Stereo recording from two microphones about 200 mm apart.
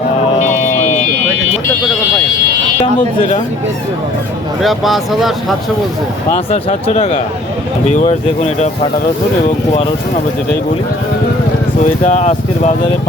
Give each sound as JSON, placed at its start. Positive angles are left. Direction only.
{"t": 4.6, "sound": "speech", "side_deg": 0}
{"t": 6.3, "sound": "speech", "side_deg": 30}
{"t": 11.8, "sound": "speech", "side_deg": 35}